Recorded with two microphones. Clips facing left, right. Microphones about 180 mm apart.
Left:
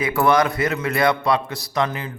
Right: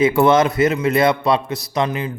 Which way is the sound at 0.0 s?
25° right (ahead or behind).